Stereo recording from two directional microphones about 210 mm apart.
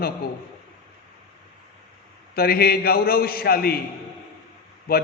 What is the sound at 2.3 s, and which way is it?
Mantra, 45° left (ahead or behind).